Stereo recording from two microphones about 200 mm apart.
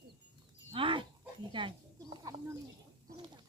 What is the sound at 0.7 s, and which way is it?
Dog, 25° right (ahead or behind).